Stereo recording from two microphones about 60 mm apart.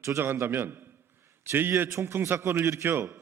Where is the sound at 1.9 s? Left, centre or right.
Right.